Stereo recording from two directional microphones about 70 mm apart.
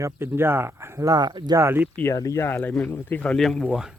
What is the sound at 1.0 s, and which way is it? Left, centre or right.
Speech, right.